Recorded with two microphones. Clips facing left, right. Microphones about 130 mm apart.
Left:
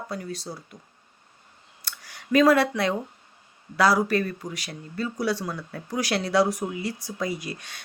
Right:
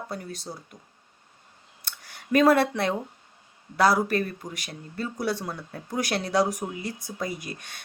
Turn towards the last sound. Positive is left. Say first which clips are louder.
# left 3 dB
turn(degrees=-50)  # may be behind; listen again after turning